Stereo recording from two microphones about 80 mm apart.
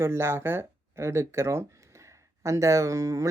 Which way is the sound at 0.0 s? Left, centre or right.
Right.